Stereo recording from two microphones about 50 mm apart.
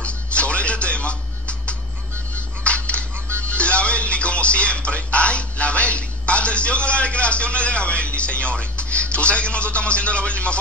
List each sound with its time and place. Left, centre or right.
0.0 s music: left
2.6 s a sound: left
3.3 s music: right
3.5 s music: left